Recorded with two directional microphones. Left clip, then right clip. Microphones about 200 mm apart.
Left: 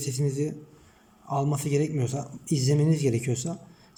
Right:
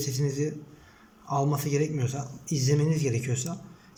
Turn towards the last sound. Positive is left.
turn(degrees=20)  # may be behind; listen again after turning